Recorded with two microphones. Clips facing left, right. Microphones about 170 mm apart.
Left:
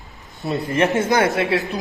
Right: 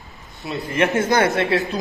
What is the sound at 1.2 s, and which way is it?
Speech, centre (ahead or behind).